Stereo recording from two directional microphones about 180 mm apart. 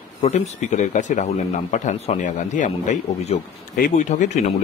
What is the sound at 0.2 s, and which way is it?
Speech, 40° left (ahead or behind).